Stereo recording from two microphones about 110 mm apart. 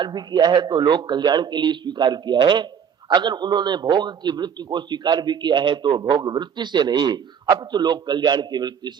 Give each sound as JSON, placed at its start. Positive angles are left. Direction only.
{"t": 0.0, "sound": "a man's voice", "side_deg": -40}